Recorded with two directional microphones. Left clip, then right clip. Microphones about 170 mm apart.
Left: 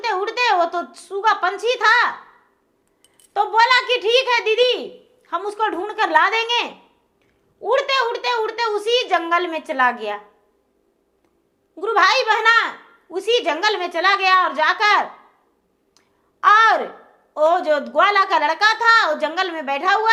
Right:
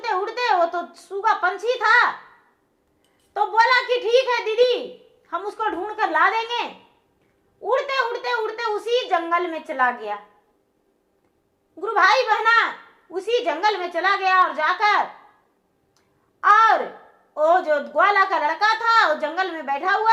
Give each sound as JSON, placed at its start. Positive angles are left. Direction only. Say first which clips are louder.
{"t": 0.0, "sound": "a woman's voice", "louder": "left 3 dB", "side_deg": 10}
{"t": 3.3, "sound": "a woman's voice", "louder": "left 2 dB", "side_deg": 10}
{"t": 11.8, "sound": "a woman's voice", "louder": "left 1 dB", "side_deg": 10}
{"t": 16.0, "sound": "a sound", "louder": "left 4 dB", "side_deg": 10}
{"t": 17.3, "sound": "a woman's voice", "louder": "left 1 dB", "side_deg": 10}